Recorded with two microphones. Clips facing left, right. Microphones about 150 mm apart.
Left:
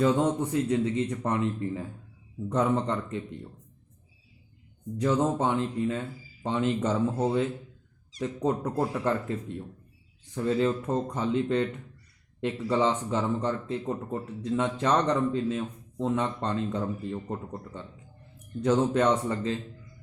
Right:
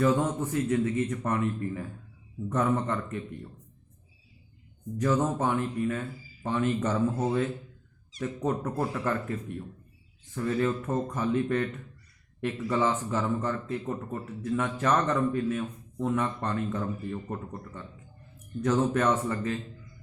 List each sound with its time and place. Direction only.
0.0 s speech: 15° left (ahead or behind)
4.9 s speech: 15° left (ahead or behind)